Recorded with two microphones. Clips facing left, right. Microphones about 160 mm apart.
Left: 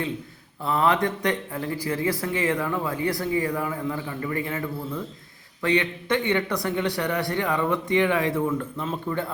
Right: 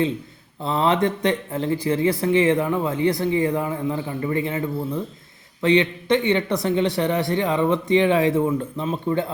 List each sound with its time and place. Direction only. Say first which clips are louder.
0.6 s speech: right 2 dB; 25° right (ahead or behind)